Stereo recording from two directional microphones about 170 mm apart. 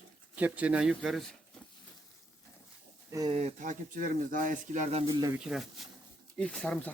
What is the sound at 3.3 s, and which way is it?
Speech, 45° right (ahead or behind).